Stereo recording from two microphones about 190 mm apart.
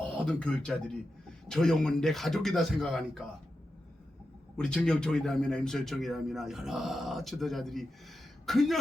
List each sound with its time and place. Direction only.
0.3 s a man's voice: 5° left (ahead or behind)
4.5 s a man's voice: 5° left (ahead or behind)